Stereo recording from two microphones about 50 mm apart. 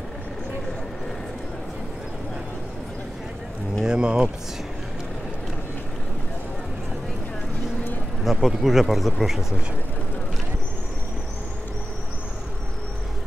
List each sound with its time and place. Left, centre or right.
3.8 s speech: centre
8.2 s speech: centre